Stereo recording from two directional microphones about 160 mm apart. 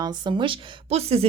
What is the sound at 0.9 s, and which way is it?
Speech, 40° right (ahead or behind).